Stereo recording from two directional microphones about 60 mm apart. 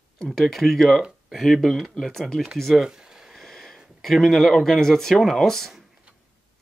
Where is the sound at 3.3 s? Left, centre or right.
Centre.